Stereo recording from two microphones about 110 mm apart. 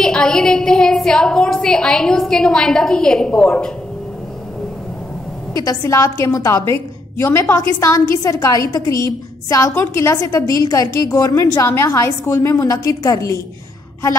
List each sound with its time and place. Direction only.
0.0 s a woman's voice: 5° left (ahead or behind)
5.5 s a woman's voice: 35° left (ahead or behind)